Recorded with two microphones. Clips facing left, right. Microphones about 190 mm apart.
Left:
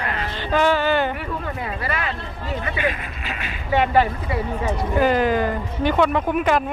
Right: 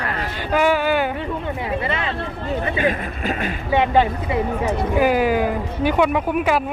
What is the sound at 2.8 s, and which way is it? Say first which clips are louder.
Speech: right 4 dB; 45° right (ahead or behind).